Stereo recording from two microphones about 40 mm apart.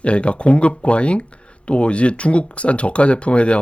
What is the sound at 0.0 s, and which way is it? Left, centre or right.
Speech, left.